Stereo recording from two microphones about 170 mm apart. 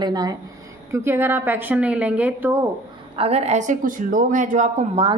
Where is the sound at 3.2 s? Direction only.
35° right (ahead or behind).